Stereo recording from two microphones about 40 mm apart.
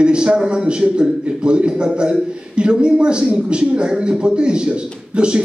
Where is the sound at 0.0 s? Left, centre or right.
Right.